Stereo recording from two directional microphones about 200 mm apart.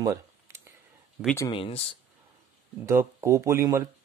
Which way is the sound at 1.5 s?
25° left (ahead or behind).